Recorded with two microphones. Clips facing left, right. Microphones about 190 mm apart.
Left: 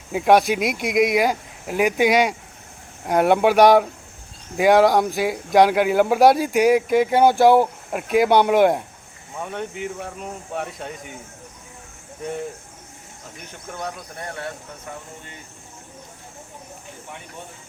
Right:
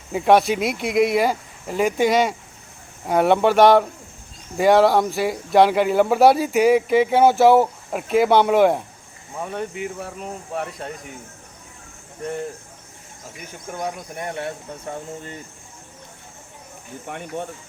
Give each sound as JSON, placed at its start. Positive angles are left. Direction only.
{"t": 0.1, "sound": "speech", "side_deg": 5}
{"t": 13.4, "sound": "speech", "side_deg": -10}
{"t": 17.1, "sound": "speech", "side_deg": -60}